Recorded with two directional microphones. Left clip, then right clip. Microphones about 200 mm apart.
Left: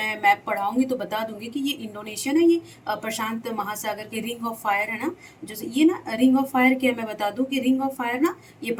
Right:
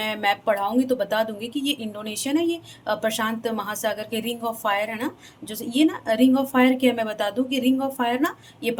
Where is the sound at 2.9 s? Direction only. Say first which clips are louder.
Right 4 dB; 50° right (ahead or behind).